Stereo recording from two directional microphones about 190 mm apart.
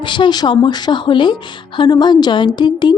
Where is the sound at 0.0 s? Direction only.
25° left (ahead or behind).